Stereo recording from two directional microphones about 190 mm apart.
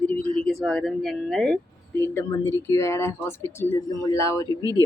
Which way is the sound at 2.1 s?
15° left (ahead or behind).